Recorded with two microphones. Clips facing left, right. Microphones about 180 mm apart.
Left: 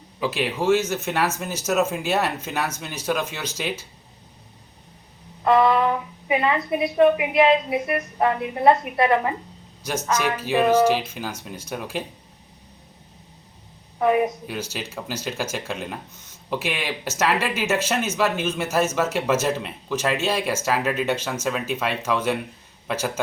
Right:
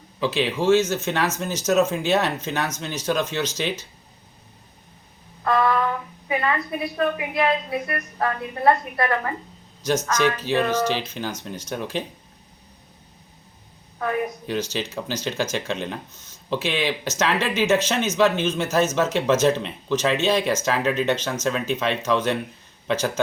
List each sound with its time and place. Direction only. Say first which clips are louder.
0.2 s speech: right 2 dB; 10° left (ahead or behind)
5.4 s speech: left 3 dB; 20° left (ahead or behind)
14.0 s speech: left 6 dB; 20° left (ahead or behind)
14.4 s speech: right 4 dB; 10° left (ahead or behind)